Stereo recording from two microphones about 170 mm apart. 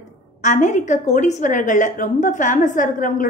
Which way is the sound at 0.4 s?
45° left (ahead or behind).